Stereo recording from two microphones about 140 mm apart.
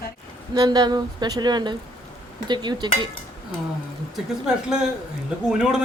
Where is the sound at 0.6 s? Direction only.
30° right (ahead or behind).